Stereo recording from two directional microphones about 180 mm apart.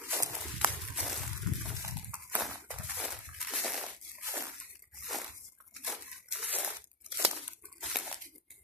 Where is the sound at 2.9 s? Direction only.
Centre (ahead or behind).